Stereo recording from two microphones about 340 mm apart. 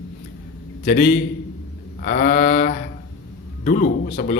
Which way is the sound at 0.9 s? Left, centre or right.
Left.